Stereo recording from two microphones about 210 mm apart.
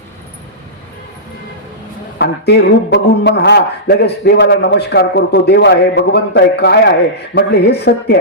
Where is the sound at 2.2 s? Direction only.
55° left (ahead or behind).